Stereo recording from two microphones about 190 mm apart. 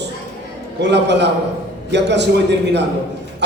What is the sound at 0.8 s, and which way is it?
A man's voice, 65° right (ahead or behind).